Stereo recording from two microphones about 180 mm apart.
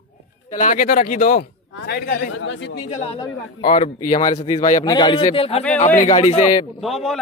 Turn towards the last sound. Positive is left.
turn(degrees=0)  # may be behind; listen again after turning